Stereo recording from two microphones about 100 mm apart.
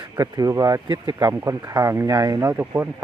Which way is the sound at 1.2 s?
30° right (ahead or behind).